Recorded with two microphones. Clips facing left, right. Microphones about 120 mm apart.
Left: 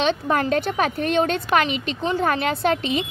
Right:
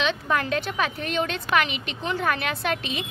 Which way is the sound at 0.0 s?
40° left (ahead or behind).